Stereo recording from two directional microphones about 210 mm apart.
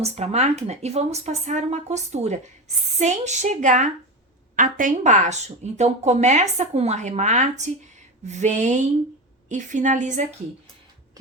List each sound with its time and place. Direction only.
0.0 s speech: 30° right (ahead or behind)